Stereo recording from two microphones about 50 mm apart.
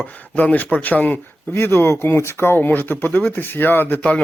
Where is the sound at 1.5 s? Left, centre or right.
Left.